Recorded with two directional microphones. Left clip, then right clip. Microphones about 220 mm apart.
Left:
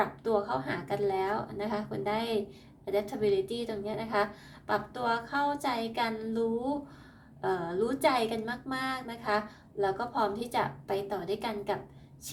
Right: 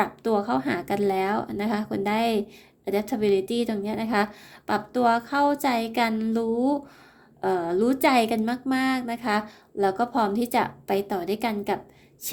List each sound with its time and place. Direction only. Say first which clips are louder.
0.0 s a woman's voice: right 5 dB; 50° right (ahead or behind)